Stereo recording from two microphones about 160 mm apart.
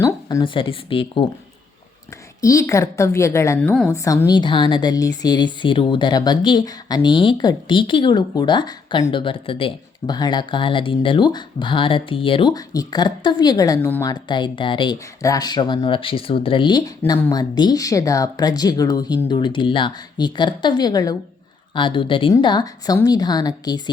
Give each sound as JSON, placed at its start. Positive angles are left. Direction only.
{"t": 0.0, "sound": "speech", "side_deg": 25}
{"t": 2.4, "sound": "a woman's voice", "side_deg": 20}